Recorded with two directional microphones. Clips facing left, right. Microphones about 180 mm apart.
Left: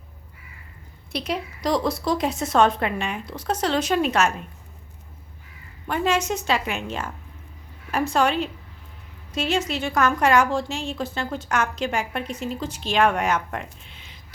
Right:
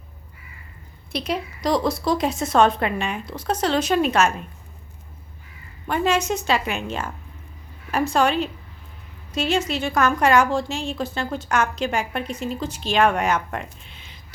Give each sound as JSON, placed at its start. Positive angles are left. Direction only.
{"t": 1.1, "sound": "a woman's voice", "side_deg": -30}
{"t": 5.9, "sound": "a woman's voice", "side_deg": -30}